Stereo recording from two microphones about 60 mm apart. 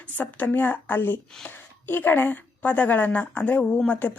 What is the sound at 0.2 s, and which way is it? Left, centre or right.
A woman's voice, left.